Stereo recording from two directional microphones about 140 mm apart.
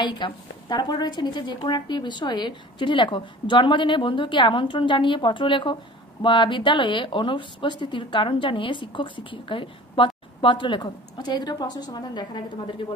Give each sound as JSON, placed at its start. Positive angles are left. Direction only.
{"t": 0.0, "sound": "a woman's voice", "side_deg": 30}